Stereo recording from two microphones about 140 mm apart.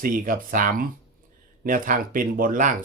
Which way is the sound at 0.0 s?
80° right.